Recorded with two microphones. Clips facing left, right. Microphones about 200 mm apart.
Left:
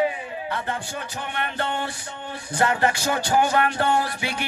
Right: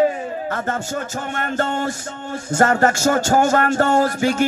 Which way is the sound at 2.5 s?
45° right (ahead or behind).